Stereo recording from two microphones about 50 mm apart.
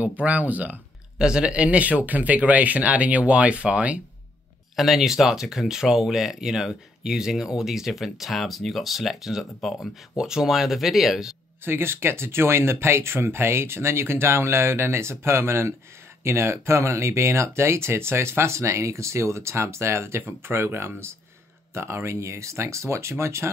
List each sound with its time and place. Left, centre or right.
0.0 s speech: right
1.1 s speech: centre
4.7 s speech: centre
10.1 s speech: centre
11.6 s speech: right